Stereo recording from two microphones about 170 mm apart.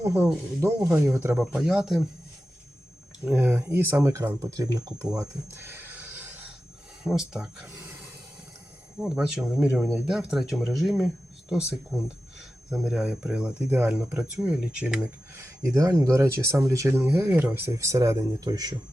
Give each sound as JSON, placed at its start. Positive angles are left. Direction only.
{"t": 0.0, "sound": "speech", "side_deg": -10}
{"t": 3.2, "sound": "speech", "side_deg": -10}
{"t": 9.0, "sound": "speech", "side_deg": -5}
{"t": 12.7, "sound": "speech", "side_deg": -5}
{"t": 15.4, "sound": "speech", "side_deg": -15}